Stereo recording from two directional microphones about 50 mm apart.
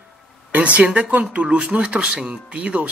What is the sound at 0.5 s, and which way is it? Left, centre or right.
Speech, right.